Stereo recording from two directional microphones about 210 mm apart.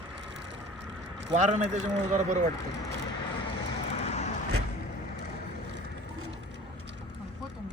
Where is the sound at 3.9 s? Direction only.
30° left (ahead or behind).